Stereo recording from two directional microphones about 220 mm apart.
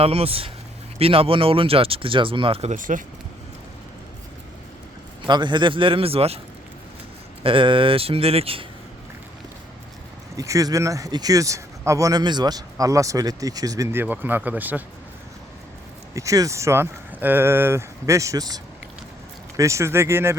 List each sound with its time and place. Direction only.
0.0 s speech: 25° right (ahead or behind)
5.2 s speech: 20° right (ahead or behind)
7.4 s speech: 25° right (ahead or behind)
10.3 s a man's voice: 15° right (ahead or behind)
16.1 s a man's voice: 15° right (ahead or behind)